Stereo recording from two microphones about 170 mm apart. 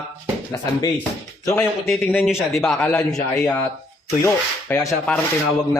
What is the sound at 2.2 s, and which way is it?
Speech, centre (ahead or behind).